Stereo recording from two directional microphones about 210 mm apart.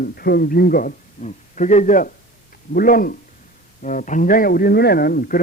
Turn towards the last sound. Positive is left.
turn(degrees=45)  # may be behind; listen again after turning